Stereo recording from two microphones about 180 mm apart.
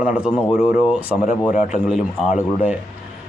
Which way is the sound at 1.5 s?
45° left (ahead or behind).